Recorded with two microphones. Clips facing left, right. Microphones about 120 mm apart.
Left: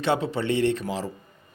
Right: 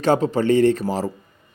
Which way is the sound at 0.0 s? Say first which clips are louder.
Right 6 dB; 40° right (ahead or behind).